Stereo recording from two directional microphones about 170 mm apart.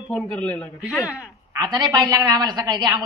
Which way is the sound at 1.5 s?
20° right (ahead or behind).